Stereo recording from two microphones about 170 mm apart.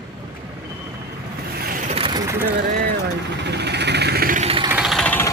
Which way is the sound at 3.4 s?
80° right.